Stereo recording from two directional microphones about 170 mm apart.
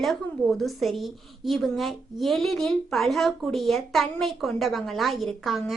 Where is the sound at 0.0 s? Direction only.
Centre (ahead or behind).